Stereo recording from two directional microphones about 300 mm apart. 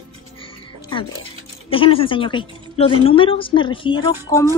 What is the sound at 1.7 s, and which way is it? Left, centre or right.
Speech, centre.